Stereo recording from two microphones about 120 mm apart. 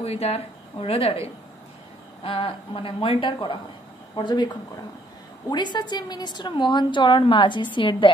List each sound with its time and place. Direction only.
0.0 s a woman's voice: 60° left (ahead or behind); by 4.5 s 40° left (ahead or behind)
5.5 s a woman's voice: 40° left (ahead or behind)